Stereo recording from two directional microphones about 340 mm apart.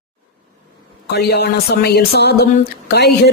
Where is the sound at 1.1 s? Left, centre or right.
Left.